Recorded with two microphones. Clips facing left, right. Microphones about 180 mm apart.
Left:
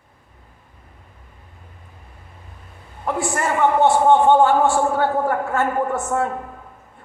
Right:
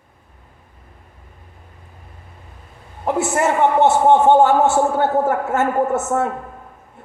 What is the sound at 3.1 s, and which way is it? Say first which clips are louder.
A man's voice: right 4 dB; 20° right (ahead or behind).